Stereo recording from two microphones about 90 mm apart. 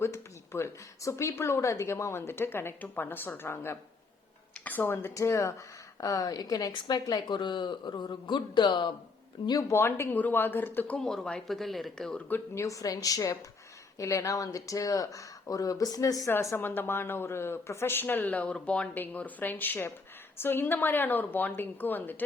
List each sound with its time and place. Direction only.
0.0 s speech: 30° left (ahead or behind); by 8.9 s 60° left (ahead or behind)
9.5 s speech: 45° left (ahead or behind)
9.7 s speech: 25° left (ahead or behind)
10.9 s speech: 5° left (ahead or behind)
12.3 s speech: 35° left (ahead or behind)
16.3 s speech: 30° left (ahead or behind)